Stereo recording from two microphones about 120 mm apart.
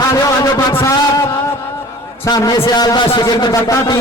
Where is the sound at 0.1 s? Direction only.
30° left (ahead or behind).